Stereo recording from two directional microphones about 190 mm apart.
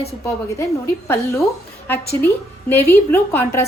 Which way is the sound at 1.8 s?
10° left (ahead or behind).